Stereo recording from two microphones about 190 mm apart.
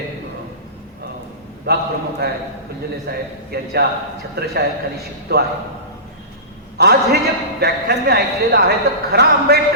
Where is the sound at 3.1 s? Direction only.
55° right (ahead or behind).